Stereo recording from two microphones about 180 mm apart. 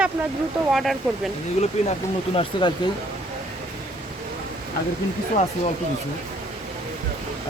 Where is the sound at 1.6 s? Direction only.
40° left (ahead or behind).